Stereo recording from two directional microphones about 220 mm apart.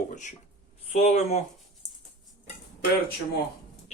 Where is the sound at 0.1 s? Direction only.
35° left (ahead or behind).